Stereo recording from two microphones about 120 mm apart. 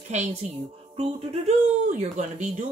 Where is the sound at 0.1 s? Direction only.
70° right (ahead or behind).